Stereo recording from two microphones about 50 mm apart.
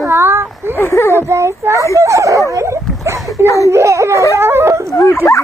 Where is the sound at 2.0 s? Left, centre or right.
Right.